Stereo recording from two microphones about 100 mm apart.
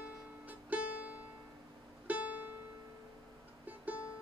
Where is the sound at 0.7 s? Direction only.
15° right (ahead or behind).